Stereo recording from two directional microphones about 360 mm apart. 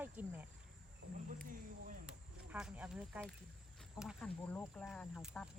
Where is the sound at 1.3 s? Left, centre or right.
Right.